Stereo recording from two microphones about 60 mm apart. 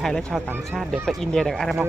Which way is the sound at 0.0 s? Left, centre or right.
Centre.